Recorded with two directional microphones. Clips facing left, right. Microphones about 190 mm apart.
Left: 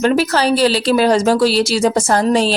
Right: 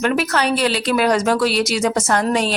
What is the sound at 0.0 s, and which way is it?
Speech, 30° left (ahead or behind).